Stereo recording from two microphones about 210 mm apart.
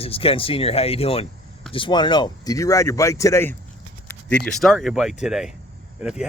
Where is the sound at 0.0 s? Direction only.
25° left (ahead or behind).